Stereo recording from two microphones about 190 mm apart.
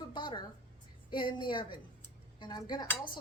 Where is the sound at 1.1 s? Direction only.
25° left (ahead or behind).